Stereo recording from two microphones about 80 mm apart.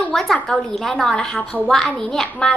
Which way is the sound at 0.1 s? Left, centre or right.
Centre.